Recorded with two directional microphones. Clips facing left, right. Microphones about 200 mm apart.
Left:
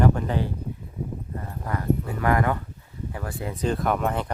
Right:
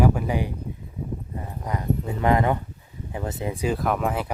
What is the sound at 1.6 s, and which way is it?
Speech, 20° right (ahead or behind).